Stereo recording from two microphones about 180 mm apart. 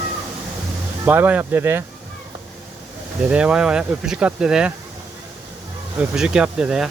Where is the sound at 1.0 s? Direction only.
10° right (ahead or behind).